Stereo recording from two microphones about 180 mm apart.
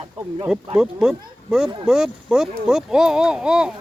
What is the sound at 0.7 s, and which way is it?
A child's voice, 5° right (ahead or behind).